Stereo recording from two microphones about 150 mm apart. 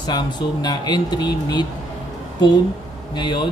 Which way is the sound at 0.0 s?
30° left (ahead or behind).